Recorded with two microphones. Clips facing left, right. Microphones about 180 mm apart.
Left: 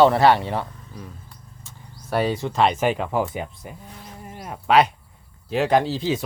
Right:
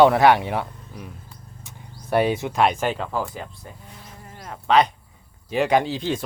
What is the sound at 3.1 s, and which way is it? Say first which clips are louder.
Speech: left 4 dB; 20° left (ahead or behind).